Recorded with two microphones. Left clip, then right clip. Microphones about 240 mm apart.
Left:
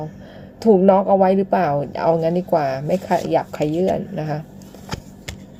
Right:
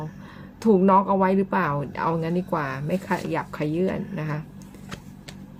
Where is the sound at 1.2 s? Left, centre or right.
Centre.